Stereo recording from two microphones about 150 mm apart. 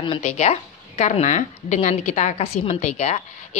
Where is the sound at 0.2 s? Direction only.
50° left (ahead or behind).